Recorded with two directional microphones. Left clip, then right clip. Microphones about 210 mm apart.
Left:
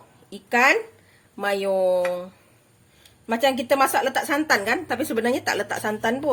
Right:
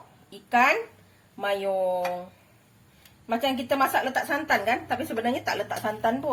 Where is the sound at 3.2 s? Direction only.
55° left (ahead or behind).